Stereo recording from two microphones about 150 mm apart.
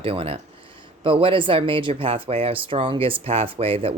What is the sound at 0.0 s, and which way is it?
Speech, 40° right (ahead or behind).